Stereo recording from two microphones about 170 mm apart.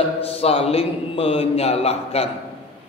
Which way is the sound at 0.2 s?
35° left (ahead or behind).